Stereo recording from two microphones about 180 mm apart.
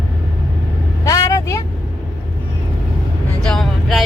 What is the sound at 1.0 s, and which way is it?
Vehicle, 20° left (ahead or behind).